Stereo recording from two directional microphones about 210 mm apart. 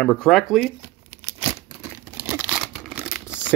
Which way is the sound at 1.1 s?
30° right (ahead or behind).